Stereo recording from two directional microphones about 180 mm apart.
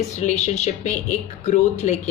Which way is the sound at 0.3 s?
40° left (ahead or behind).